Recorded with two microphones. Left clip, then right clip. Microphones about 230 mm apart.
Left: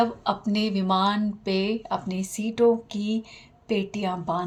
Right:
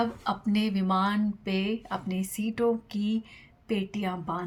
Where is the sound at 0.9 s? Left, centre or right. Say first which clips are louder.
Left 5 dB; right.